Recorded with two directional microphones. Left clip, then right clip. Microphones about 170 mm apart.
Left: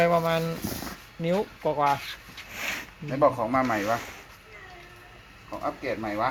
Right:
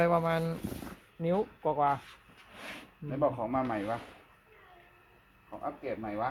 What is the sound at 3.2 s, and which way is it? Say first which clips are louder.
Speech: left 8 dB; 25° left (ahead or behind).